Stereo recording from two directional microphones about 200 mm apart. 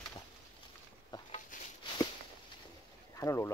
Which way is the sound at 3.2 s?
15° left (ahead or behind).